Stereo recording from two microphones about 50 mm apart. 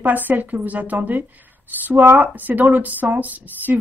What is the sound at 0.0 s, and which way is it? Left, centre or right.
Speech, right.